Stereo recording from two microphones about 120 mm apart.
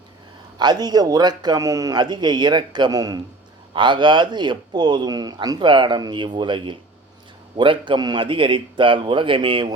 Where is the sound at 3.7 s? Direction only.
40° right (ahead or behind).